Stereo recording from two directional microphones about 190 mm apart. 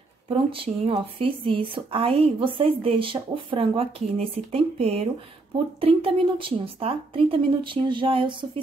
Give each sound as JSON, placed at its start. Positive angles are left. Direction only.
{"t": 0.3, "sound": "speech", "side_deg": -30}